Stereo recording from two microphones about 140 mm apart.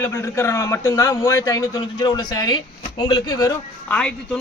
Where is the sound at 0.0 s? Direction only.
15° left (ahead or behind).